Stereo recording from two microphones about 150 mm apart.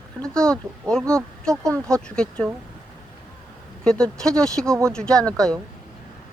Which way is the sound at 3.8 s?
5° left (ahead or behind).